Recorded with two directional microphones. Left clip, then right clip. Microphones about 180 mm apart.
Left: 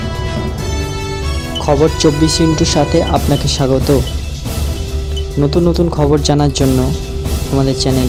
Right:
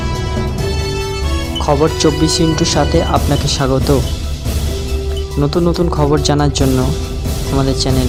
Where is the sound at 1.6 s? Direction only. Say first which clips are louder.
Left 1 dB; centre (ahead or behind).